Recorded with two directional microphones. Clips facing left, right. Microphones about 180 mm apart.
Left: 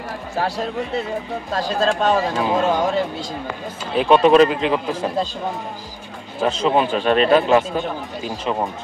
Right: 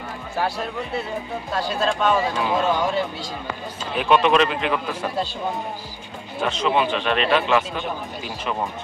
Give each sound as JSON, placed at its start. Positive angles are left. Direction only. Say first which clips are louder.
{"t": 1.6, "sound": "speech", "louder": "left 3 dB", "side_deg": 35}
{"t": 6.4, "sound": "speech", "louder": "left 3 dB", "side_deg": 35}